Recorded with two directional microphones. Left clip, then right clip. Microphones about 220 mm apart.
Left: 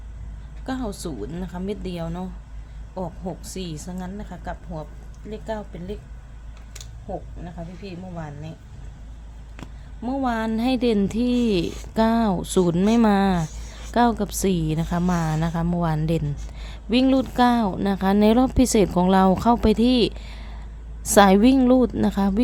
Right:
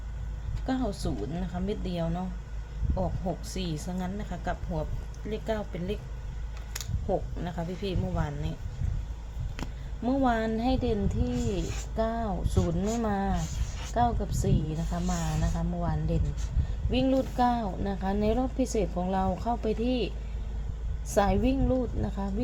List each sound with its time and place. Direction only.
0.6 s a woman's voice: 20° left (ahead or behind); by 6.0 s centre (ahead or behind)
7.4 s speech: 15° right (ahead or behind)
10.0 s speech: 15° left (ahead or behind); by 22.3 s 40° left (ahead or behind)